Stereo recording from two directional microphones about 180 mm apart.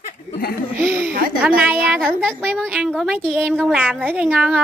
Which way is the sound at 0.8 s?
10° right (ahead or behind).